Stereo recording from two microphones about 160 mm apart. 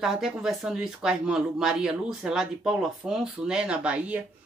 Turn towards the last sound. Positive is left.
turn(degrees=-5)  # may be behind; listen again after turning